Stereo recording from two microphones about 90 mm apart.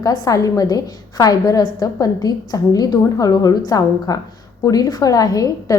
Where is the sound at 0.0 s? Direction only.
40° left (ahead or behind).